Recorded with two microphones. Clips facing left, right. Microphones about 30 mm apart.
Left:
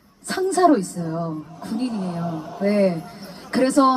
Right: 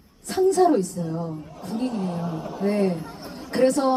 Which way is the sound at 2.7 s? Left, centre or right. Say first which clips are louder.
Left 4 dB; left.